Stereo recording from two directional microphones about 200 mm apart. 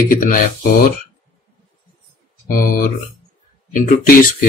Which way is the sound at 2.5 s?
45° left (ahead or behind).